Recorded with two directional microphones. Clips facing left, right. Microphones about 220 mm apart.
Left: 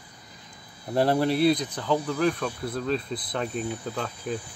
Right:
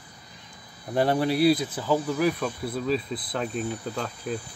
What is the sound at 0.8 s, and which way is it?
Speech, centre (ahead or behind).